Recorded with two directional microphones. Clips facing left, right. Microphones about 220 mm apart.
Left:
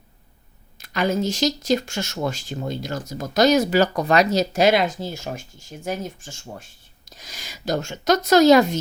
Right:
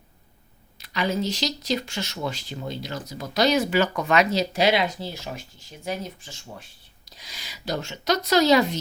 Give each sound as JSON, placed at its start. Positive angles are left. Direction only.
{"t": 0.8, "sound": "speech", "side_deg": 45}